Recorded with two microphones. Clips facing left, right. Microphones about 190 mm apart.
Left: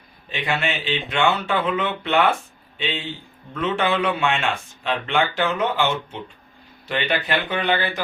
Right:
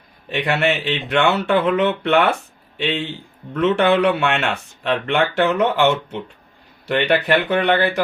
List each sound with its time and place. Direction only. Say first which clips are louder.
0.3 s speech: right 6 dB; 65° right (ahead or behind)